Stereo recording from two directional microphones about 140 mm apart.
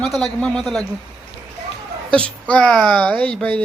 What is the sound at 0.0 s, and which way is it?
Speech, 5° left (ahead or behind).